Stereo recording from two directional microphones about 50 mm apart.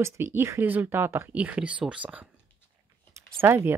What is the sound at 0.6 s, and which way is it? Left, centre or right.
Speech, right.